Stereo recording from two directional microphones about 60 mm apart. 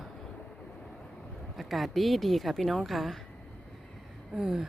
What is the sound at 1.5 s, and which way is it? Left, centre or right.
A woman's voice, centre.